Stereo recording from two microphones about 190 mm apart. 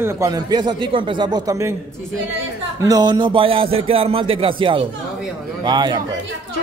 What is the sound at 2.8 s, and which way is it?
Speech, 20° right (ahead or behind).